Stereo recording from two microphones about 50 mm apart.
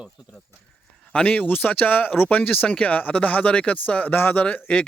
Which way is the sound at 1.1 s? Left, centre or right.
Left.